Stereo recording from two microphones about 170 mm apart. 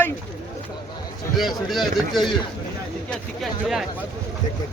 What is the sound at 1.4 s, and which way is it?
Speech, centre (ahead or behind).